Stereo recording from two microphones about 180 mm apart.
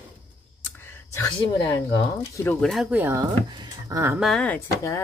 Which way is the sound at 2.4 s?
5° left (ahead or behind).